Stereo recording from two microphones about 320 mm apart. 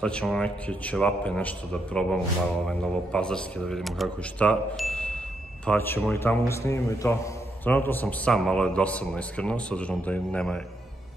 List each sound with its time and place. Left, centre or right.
0.0 s a man's voice: centre